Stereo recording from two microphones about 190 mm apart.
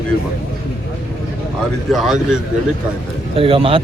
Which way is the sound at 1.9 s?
Centre (ahead or behind).